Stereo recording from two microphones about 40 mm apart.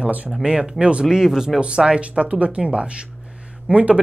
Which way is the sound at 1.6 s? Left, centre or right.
Right.